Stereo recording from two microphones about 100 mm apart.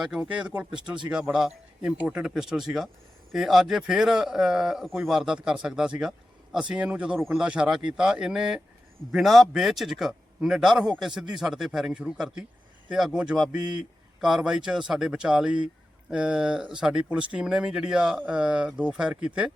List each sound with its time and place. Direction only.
0.0 s speech: 10° right (ahead or behind)